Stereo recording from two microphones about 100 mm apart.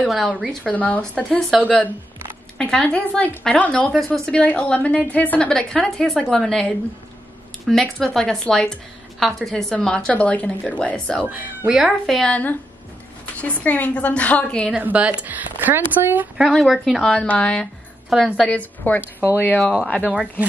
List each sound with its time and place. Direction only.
0.0 s speech: centre (ahead or behind)
0.5 s a woman's voice: 10° left (ahead or behind)
11.6 s speech: 5° right (ahead or behind)
12.2 s a woman's voice: 15° left (ahead or behind)
14.7 s a woman's voice: 15° right (ahead or behind)
16.3 s speech: centre (ahead or behind)
17.1 s a woman's voice: 10° left (ahead or behind)
18.1 s speech: 5° right (ahead or behind)
18.5 s a woman's voice: 15° left (ahead or behind)
20.0 s a woman's voice: 10° right (ahead or behind)